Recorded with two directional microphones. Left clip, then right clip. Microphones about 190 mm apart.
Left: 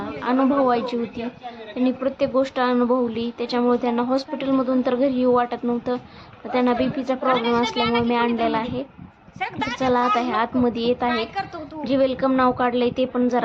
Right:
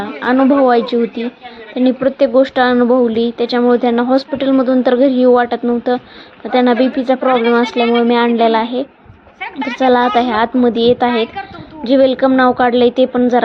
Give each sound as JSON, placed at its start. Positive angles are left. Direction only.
{"t": 0.2, "sound": "speech", "side_deg": -20}
{"t": 9.4, "sound": "speech", "side_deg": 70}
{"t": 9.8, "sound": "speech", "side_deg": -25}